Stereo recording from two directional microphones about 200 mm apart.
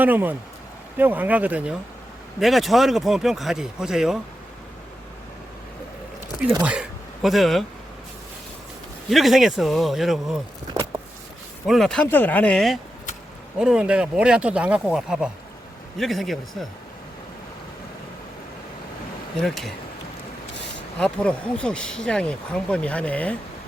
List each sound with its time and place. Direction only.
0.0 s speech: 10° right (ahead or behind)
6.6 s speech: 5° right (ahead or behind)
9.0 s speech: centre (ahead or behind)
11.6 s speech: centre (ahead or behind)
19.4 s speech: centre (ahead or behind)
21.0 s speech: 5° left (ahead or behind)